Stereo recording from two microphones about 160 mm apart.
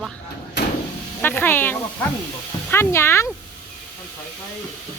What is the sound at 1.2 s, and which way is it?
Speech, 15° left (ahead or behind).